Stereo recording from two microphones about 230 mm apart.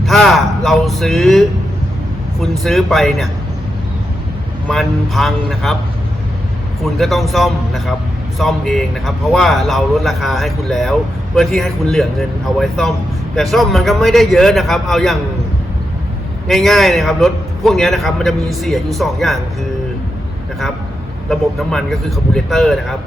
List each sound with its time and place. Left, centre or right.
0.0 s a man's voice: centre
4.7 s a man's voice: centre
6.8 s a man's voice: centre
16.5 s a man's voice: centre
21.2 s a man's voice: centre